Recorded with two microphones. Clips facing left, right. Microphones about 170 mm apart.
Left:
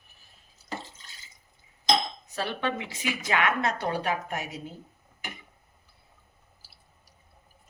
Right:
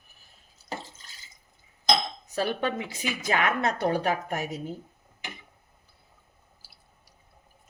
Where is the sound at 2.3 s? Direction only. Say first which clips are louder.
Right 3 dB; 40° right (ahead or behind).